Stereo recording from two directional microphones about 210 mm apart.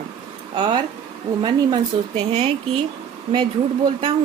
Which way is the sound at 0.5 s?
20° right (ahead or behind).